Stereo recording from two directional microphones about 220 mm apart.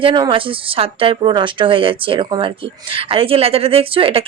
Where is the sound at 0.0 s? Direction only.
25° right (ahead or behind).